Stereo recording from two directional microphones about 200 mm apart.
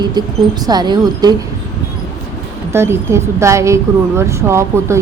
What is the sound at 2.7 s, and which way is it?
A woman's voice, 10° right (ahead or behind).